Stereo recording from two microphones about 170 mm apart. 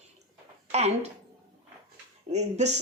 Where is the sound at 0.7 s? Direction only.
40° right (ahead or behind).